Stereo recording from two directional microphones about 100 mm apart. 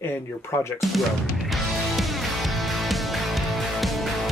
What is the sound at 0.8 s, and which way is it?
Music, centre (ahead or behind).